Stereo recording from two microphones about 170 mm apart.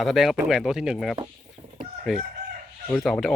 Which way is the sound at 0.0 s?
Centre (ahead or behind).